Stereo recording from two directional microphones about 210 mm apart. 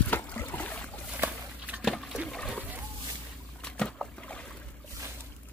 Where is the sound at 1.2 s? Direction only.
5° right (ahead or behind).